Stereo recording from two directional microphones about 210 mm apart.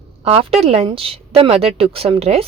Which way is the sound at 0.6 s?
30° right (ahead or behind).